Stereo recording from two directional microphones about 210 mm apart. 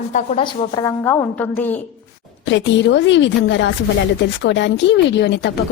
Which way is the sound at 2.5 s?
60° left (ahead or behind).